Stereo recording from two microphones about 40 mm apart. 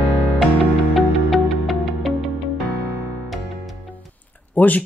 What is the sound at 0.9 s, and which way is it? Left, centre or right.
Music, centre.